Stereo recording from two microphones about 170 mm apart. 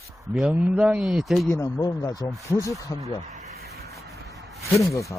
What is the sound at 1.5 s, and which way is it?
Speech, 20° left (ahead or behind).